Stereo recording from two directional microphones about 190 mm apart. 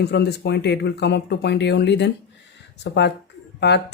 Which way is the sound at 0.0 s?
60° left (ahead or behind).